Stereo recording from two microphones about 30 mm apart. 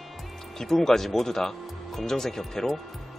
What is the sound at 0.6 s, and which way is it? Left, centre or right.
Speech, centre.